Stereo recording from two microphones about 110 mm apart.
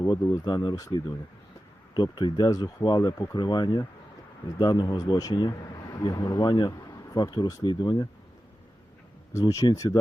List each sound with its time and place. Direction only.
0.0 s speech: 35° left (ahead or behind)
5.9 s speech: 35° left (ahead or behind)
9.3 s speech: 30° left (ahead or behind)